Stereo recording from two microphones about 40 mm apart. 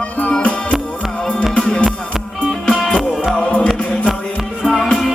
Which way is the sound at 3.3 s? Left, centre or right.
Left.